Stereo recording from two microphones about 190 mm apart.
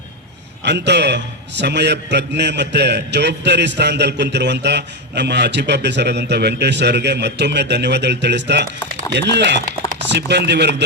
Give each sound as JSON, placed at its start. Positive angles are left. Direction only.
{"t": 0.6, "sound": "a man's voice", "side_deg": -65}